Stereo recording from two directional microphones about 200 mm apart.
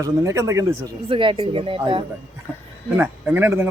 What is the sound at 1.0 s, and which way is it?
Speech, 25° right (ahead or behind).